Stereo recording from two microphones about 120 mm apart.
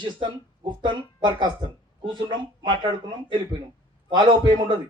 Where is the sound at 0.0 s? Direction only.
40° right (ahead or behind).